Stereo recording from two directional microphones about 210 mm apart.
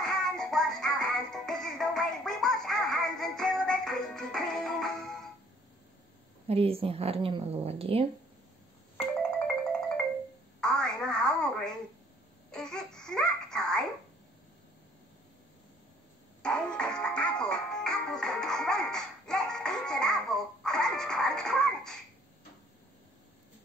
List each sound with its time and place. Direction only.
0.0 s music: centre (ahead or behind)
6.4 s a woman's voice: 25° right (ahead or behind)
10.6 s telephone: 5° left (ahead or behind)
12.4 s child singing: 5° left (ahead or behind)
16.4 s music: 5° left (ahead or behind)